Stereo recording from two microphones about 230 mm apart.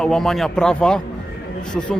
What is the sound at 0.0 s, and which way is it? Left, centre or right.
A man's voice, centre.